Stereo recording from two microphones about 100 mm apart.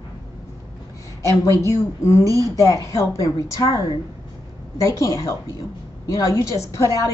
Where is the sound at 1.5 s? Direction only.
30° left (ahead or behind).